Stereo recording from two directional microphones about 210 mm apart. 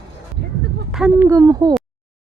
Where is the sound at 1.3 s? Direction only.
15° right (ahead or behind).